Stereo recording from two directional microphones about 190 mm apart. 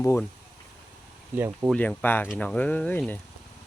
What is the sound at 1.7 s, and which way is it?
Speech, 10° left (ahead or behind).